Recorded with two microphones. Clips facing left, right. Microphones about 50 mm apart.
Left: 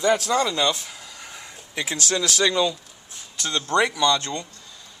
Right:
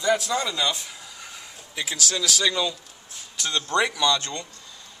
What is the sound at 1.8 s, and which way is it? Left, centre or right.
Speech, left.